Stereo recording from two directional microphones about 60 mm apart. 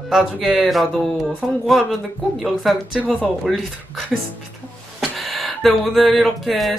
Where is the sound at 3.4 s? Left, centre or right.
Centre.